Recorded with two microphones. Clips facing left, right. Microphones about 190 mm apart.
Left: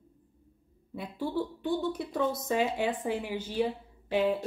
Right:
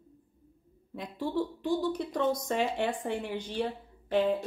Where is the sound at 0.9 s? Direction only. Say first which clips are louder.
Even; 5° left (ahead or behind).